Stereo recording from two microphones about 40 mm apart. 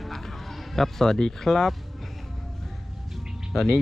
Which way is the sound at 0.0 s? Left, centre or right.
Centre.